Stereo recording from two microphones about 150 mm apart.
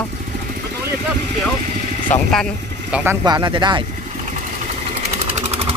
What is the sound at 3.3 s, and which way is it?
Speech, 25° right (ahead or behind).